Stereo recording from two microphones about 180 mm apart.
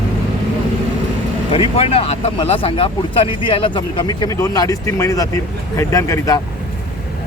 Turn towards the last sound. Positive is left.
turn(degrees=20)  # may be behind; listen again after turning